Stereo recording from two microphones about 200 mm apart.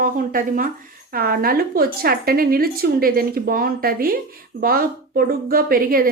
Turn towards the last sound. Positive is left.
turn(degrees=-45)  # may be behind; listen again after turning